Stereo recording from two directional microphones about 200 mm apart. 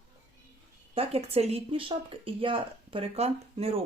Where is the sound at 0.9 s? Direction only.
30° right (ahead or behind).